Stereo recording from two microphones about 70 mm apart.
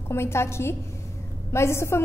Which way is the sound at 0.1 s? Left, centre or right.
Left.